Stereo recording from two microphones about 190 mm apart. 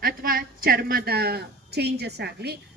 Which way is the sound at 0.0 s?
50° right (ahead or behind).